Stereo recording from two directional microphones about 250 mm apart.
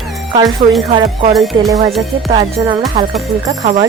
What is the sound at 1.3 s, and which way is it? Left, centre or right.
Speech, centre.